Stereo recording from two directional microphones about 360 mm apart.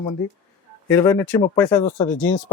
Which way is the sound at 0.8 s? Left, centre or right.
Centre.